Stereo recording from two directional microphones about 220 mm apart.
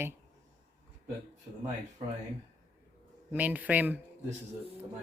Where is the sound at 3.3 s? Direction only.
5° right (ahead or behind).